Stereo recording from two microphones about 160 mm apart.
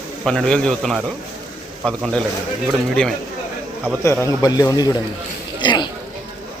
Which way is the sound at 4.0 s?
15° left (ahead or behind).